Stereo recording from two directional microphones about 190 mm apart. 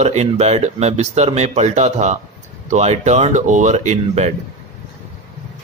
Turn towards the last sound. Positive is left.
turn(degrees=-35)  # may be behind; listen again after turning